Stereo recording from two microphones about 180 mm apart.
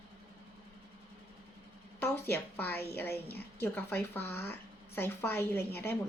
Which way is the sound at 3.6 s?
10° left (ahead or behind).